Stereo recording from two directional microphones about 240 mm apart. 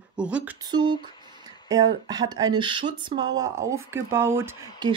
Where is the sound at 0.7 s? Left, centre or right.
Centre.